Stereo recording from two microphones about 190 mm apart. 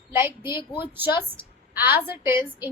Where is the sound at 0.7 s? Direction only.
10° right (ahead or behind).